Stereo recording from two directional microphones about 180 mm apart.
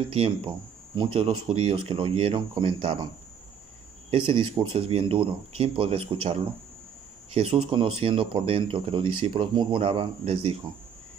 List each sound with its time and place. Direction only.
0.1 s speech: 35° right (ahead or behind)
4.1 s speech: 30° right (ahead or behind)